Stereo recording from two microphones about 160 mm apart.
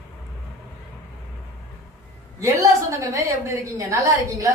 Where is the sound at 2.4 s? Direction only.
20° right (ahead or behind).